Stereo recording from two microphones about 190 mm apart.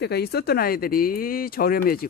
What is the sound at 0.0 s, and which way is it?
Speech, 60° left (ahead or behind).